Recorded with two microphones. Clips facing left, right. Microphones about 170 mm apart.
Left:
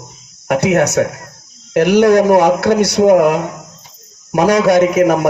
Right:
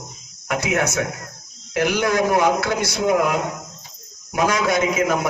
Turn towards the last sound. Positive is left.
turn(degrees=65)  # may be behind; listen again after turning